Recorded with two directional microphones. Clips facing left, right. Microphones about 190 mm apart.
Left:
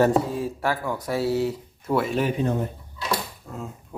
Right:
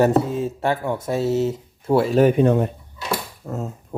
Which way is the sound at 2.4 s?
70° right (ahead or behind).